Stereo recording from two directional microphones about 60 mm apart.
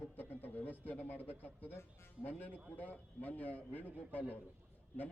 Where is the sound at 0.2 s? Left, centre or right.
Left.